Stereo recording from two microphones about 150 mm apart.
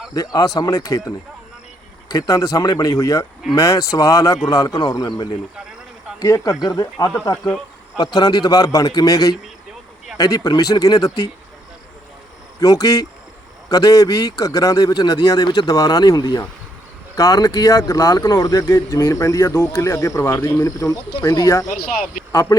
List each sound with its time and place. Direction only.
0.1 s speech: 25° left (ahead or behind)
2.1 s speech: 25° left (ahead or behind)
12.5 s speech: 25° left (ahead or behind)
21.7 s speech: 70° left (ahead or behind)
22.3 s speech: 20° left (ahead or behind)